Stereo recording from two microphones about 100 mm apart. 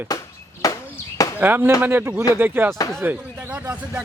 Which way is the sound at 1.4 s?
20° right (ahead or behind).